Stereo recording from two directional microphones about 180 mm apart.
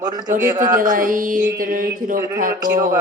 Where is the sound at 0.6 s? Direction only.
50° right (ahead or behind).